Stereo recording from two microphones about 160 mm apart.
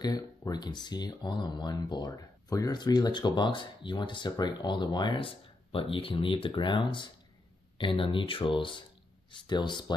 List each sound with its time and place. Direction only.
0.0 s speech: 25° left (ahead or behind)